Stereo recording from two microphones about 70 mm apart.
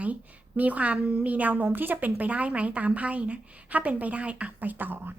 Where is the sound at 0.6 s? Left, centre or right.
Right.